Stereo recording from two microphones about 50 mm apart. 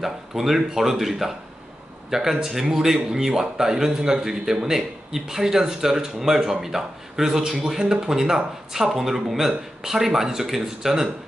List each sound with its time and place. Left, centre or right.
0.0 s speech: centre